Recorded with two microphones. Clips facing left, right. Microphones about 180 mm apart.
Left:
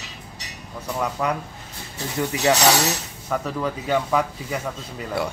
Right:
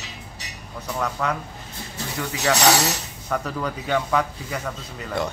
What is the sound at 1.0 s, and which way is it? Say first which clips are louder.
Speech: left 1 dB; 10° left (ahead or behind).